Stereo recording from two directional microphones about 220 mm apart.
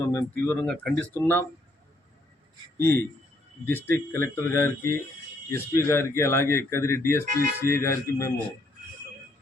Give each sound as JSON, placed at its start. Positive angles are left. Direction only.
{"t": 0.1, "sound": "speech", "side_deg": 10}
{"t": 2.7, "sound": "speech", "side_deg": 10}
{"t": 7.4, "sound": "speech", "side_deg": -40}
{"t": 7.8, "sound": "speech", "side_deg": 15}